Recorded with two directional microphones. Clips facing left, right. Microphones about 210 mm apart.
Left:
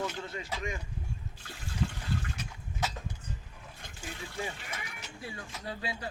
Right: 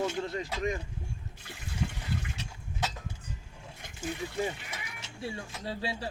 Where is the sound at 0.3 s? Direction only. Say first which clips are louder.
Right 5 dB; 40° right (ahead or behind).